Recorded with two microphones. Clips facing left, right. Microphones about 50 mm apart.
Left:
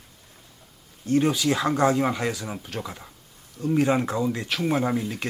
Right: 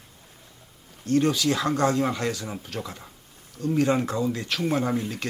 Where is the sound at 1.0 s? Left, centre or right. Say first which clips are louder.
Even; centre.